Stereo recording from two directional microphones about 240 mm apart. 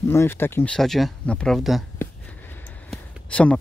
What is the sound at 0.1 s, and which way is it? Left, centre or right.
Speech, centre.